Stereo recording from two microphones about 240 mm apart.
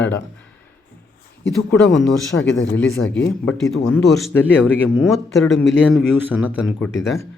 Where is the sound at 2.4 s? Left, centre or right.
Left.